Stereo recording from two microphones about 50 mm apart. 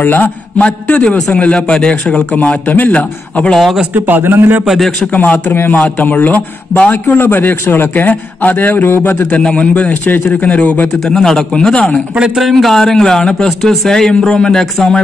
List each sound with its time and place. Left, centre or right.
0.0 s a man's voice: left
0.6 s a man's voice: left
3.5 s a man's voice: centre
3.9 s a man's voice: right
5.1 s a man's voice: left
9.3 s a man's voice: left
10.9 s a man's voice: centre
12.2 s a man's voice: centre